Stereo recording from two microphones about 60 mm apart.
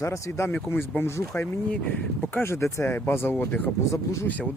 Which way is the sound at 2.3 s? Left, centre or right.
Left.